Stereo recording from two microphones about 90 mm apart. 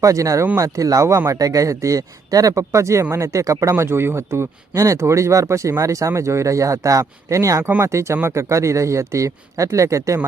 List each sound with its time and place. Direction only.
0.0 s speech: 40° right (ahead or behind)